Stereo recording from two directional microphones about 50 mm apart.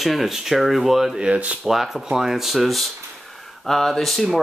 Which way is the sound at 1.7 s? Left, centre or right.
Centre.